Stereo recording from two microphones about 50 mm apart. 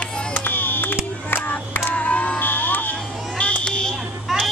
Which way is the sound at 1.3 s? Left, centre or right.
Left.